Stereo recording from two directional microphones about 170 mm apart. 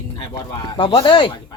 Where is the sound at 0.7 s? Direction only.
30° left (ahead or behind).